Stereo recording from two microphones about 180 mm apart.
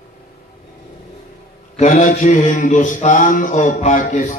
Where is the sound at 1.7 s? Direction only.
40° left (ahead or behind).